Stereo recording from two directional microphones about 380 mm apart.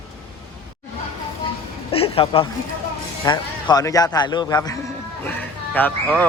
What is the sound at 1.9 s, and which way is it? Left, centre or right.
Speech, centre.